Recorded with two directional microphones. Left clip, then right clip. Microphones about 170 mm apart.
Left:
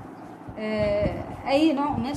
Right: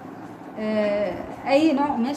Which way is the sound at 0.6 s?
30° left (ahead or behind).